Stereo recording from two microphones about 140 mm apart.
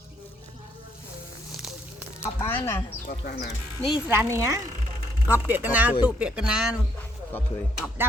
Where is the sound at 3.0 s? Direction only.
70° left (ahead or behind).